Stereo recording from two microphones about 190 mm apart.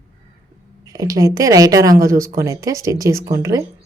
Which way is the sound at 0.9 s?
20° right (ahead or behind).